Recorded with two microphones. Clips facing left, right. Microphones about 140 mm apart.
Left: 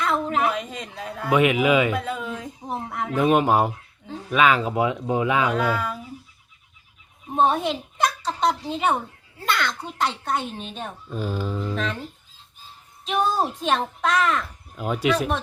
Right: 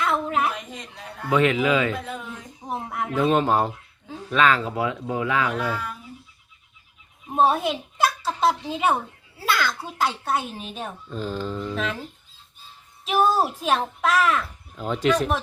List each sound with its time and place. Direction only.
0.0 s a woman's voice: centre (ahead or behind)
0.9 s a man's voice: 90° left
1.3 s speech: 15° left (ahead or behind)
2.6 s a child's voice: 5° right (ahead or behind)
3.2 s speech: 10° left (ahead or behind)
7.3 s a woman's voice: centre (ahead or behind)
11.1 s speech: 10° left (ahead or behind)
11.8 s a child's voice: 5° right (ahead or behind)
13.1 s a child's voice: 5° right (ahead or behind)
14.8 s speech: 10° left (ahead or behind)